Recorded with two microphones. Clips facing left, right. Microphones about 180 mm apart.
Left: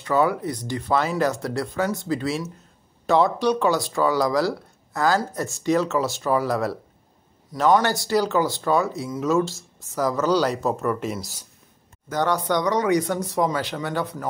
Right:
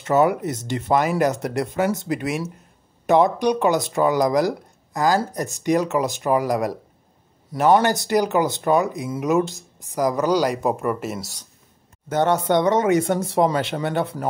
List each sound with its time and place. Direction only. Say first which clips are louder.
0.0 s speech: right 3 dB; 20° right (ahead or behind); by 11.4 s centre (ahead or behind)
12.1 s speech: right 4 dB; 25° right (ahead or behind)